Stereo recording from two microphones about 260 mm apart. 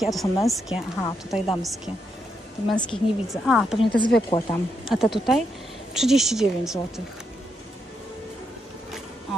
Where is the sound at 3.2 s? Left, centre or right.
Centre.